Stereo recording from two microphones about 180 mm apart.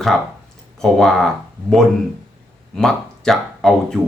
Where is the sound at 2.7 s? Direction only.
Centre (ahead or behind).